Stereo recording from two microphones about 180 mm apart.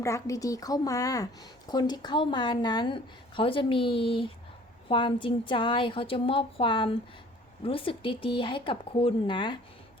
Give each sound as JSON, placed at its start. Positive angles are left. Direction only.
{"t": 0.0, "sound": "a woman's voice", "side_deg": 15}